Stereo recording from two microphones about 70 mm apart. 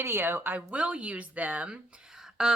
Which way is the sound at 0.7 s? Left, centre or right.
Centre.